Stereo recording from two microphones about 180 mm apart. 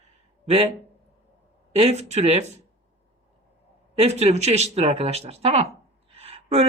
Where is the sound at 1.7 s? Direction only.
35° right (ahead or behind).